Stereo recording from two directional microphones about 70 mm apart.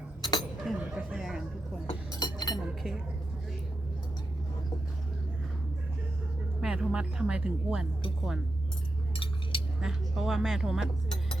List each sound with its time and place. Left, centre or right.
0.2 s chink: left
0.7 s a sound: centre
2.1 s chink: left
6.6 s a sound: centre
6.9 s speech: centre
9.8 s speech: centre